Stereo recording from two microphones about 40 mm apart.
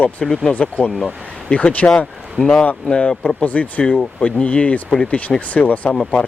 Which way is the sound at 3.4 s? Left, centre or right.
Left.